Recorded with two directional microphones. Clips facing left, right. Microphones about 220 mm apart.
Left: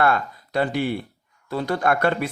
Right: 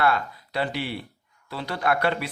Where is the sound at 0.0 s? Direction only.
50° left (ahead or behind).